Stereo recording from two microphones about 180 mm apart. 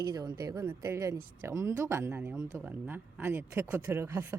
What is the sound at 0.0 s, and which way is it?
A woman's voice, 20° right (ahead or behind).